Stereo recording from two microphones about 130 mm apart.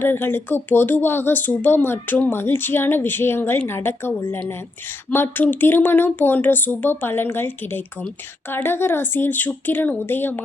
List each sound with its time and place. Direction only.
0.0 s speech: 15° left (ahead or behind)